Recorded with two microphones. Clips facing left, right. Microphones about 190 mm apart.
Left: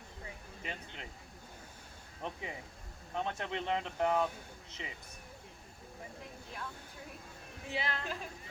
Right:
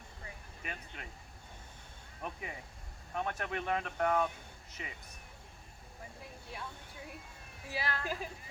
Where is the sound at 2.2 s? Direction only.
25° left (ahead or behind).